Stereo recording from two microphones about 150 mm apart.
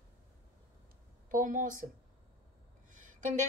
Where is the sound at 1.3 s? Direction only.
60° right (ahead or behind).